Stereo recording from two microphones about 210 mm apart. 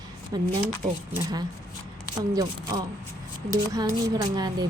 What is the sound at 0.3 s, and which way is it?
A woman's voice, 20° right (ahead or behind).